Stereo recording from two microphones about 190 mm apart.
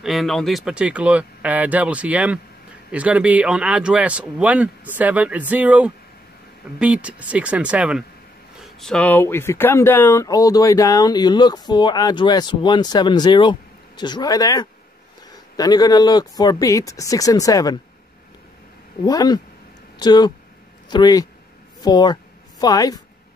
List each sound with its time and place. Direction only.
0.0 s speech: centre (ahead or behind); by 17.7 s 20° left (ahead or behind)
19.0 s speech: 20° left (ahead or behind)